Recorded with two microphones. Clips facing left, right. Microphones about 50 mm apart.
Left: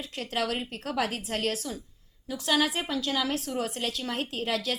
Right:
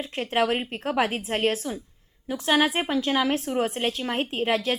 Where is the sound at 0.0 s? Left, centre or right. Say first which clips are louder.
Right 6 dB; right.